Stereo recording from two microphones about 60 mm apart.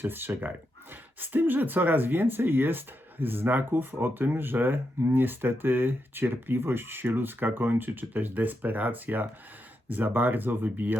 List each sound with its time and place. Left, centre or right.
0.0 s speech: right